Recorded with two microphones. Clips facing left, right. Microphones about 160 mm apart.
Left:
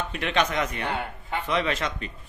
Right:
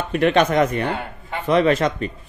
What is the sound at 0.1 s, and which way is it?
A man's voice, 50° right (ahead or behind).